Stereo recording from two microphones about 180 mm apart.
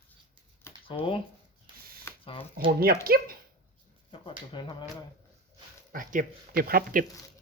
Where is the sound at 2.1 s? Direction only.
15° left (ahead or behind).